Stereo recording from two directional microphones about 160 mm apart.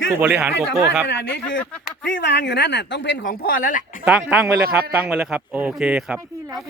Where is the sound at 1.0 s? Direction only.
90° left; by 3.8 s 60° left (ahead or behind).